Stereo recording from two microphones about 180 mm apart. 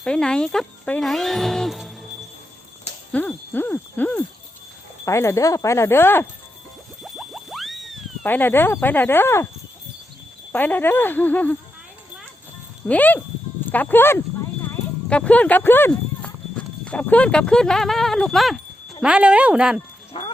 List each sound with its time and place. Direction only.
0.0 s speech: 5° left (ahead or behind)
3.1 s speech: 10° left (ahead or behind)
7.0 s boing: centre (ahead or behind)
8.2 s speech: 10° left (ahead or behind)
10.5 s speech: 10° left (ahead or behind)
12.9 s speech: 10° left (ahead or behind)
14.7 s clip-clop: 5° left (ahead or behind)
16.8 s speech: 5° left (ahead or behind)
20.1 s speech: 30° left (ahead or behind)